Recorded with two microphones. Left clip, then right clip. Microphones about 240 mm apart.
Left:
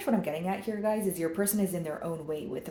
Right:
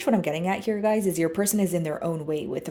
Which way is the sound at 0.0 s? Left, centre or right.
Right.